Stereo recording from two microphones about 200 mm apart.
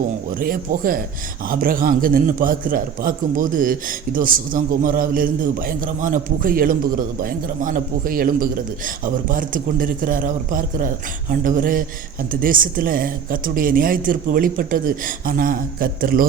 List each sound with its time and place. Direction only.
0.3 s a man's voice: 45° right (ahead or behind)